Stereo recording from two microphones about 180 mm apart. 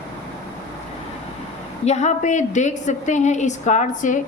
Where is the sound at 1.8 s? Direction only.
40° left (ahead or behind).